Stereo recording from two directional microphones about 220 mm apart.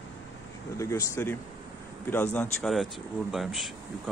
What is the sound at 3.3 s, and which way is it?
Speech, centre (ahead or behind).